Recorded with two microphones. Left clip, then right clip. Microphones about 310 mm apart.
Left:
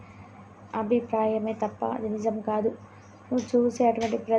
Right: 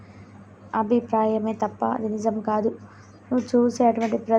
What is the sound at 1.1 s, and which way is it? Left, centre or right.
Speech, centre.